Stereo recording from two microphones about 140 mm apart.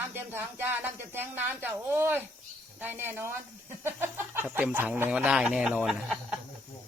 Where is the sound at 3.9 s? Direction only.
15° right (ahead or behind).